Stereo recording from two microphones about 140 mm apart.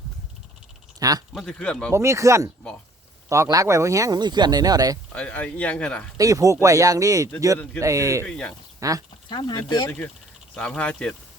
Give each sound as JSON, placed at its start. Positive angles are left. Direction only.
{"t": 0.9, "sound": "speech", "side_deg": -25}
{"t": 1.3, "sound": "speech", "side_deg": 5}
{"t": 1.9, "sound": "speech", "side_deg": -20}
{"t": 5.1, "sound": "speech", "side_deg": 10}
{"t": 6.1, "sound": "speech", "side_deg": -25}
{"t": 8.2, "sound": "speech", "side_deg": 10}
{"t": 8.8, "sound": "speech", "side_deg": -25}
{"t": 9.3, "sound": "speech", "side_deg": 30}
{"t": 10.5, "sound": "speech", "side_deg": 5}